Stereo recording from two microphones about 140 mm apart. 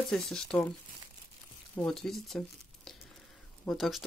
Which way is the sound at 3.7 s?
Centre (ahead or behind).